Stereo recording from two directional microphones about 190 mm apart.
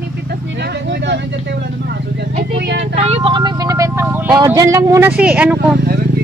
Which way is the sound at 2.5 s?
65° right (ahead or behind).